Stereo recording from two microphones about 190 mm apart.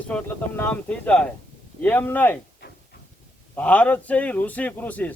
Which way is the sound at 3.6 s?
5° left (ahead or behind).